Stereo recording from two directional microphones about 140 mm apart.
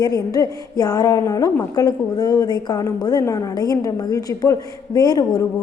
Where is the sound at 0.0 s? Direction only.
25° left (ahead or behind).